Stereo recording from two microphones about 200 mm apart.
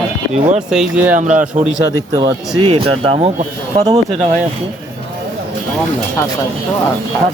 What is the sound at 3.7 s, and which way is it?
Speech, 20° right (ahead or behind).